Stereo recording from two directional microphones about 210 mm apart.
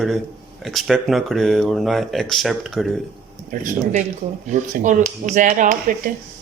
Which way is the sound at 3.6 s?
35° right (ahead or behind).